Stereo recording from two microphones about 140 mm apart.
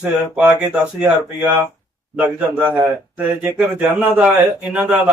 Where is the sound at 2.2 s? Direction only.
10° right (ahead or behind).